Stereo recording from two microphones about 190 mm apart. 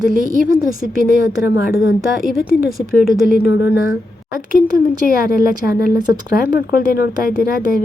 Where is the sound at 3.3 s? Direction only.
55° left (ahead or behind).